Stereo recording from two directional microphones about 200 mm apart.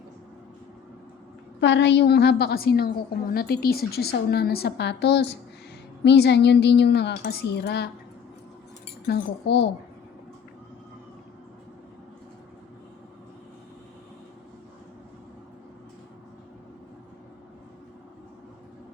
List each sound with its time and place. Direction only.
1.6 s a woman's voice: 60° left (ahead or behind)
9.0 s speech: 55° left (ahead or behind)